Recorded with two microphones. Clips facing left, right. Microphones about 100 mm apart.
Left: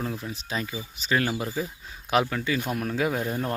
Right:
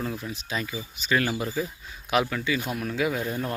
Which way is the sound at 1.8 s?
30° left (ahead or behind).